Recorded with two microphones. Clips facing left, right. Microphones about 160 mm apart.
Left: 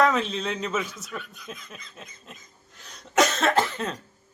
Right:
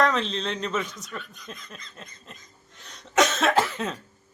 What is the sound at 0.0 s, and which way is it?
Speech, 5° left (ahead or behind).